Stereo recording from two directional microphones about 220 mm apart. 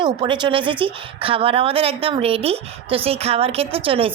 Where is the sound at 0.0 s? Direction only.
20° right (ahead or behind).